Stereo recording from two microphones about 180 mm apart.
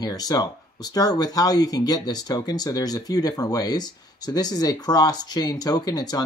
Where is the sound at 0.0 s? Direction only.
20° left (ahead or behind).